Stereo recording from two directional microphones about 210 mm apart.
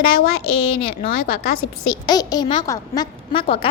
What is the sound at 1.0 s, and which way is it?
Speech, 45° left (ahead or behind).